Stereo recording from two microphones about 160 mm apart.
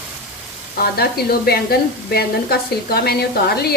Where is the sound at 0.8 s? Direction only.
75° left (ahead or behind).